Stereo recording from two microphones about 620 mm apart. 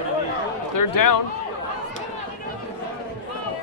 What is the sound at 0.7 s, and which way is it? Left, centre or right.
Speech, left.